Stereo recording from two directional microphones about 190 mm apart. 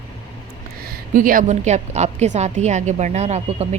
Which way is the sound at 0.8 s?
50° right (ahead or behind).